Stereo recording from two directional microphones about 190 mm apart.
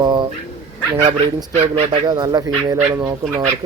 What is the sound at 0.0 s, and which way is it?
Dog, 25° right (ahead or behind).